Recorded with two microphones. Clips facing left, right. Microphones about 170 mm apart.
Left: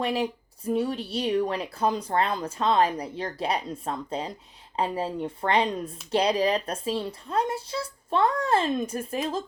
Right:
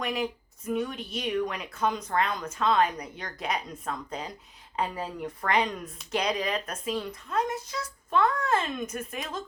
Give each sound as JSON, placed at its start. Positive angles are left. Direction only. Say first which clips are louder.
{"t": 0.0, "sound": "speech", "louder": "left 4 dB", "side_deg": 30}